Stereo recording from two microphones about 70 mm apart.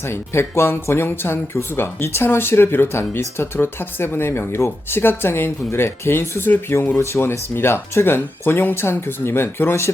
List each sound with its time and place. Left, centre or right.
0.0 s speech: left